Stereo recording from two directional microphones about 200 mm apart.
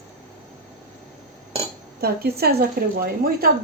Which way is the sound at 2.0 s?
50° right (ahead or behind).